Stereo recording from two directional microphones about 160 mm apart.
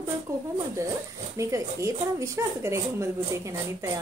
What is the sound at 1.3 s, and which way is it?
Speech, 20° right (ahead or behind).